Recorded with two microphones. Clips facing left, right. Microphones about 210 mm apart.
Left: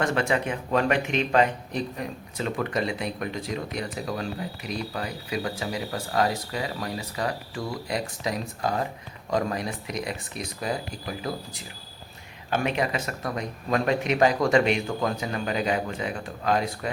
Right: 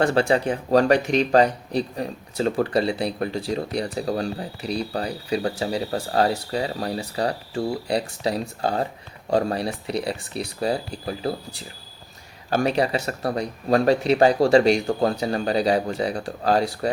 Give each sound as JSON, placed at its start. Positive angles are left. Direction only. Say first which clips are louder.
{"t": 0.0, "sound": "speech", "louder": "right 5 dB", "side_deg": -30}